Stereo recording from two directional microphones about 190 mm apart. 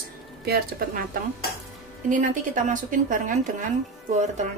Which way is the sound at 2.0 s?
45° right (ahead or behind).